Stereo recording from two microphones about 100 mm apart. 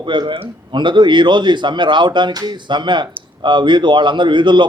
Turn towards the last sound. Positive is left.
turn(degrees=-50)  # may be behind; listen again after turning